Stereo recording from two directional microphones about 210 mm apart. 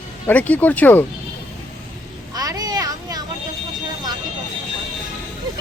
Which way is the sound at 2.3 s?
20° right (ahead or behind).